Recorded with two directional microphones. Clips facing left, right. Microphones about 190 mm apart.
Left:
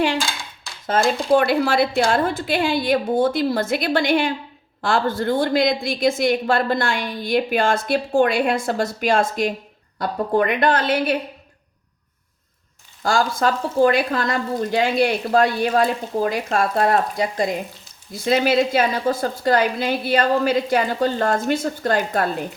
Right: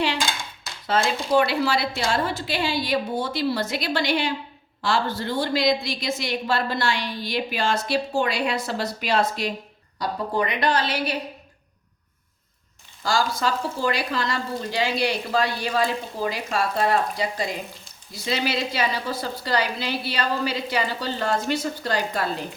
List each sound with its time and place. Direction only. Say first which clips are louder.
1.3 s a woman's voice: left 3 dB; 50° left (ahead or behind)
13.0 s a woman's voice: left 4 dB; 50° left (ahead or behind)